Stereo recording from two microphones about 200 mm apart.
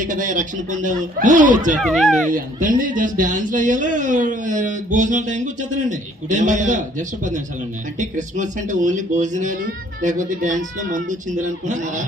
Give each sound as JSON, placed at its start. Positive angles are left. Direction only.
{"t": 0.0, "sound": "a man's voice", "side_deg": -40}
{"t": 1.8, "sound": "speech", "side_deg": 0}
{"t": 2.3, "sound": "a man's voice", "side_deg": -40}
{"t": 7.9, "sound": "a man's voice", "side_deg": -40}